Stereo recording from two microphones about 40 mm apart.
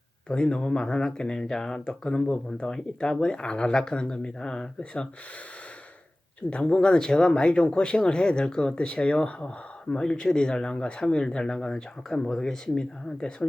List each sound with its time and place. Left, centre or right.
0.3 s speech: left
6.5 s speech: left